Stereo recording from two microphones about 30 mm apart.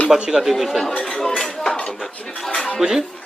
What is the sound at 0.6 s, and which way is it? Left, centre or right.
Speech, centre.